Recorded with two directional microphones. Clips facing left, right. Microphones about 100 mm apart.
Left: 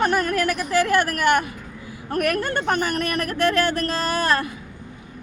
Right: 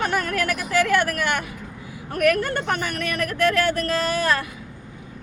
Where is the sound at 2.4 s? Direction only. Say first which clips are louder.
Left 2 dB; 35° left (ahead or behind).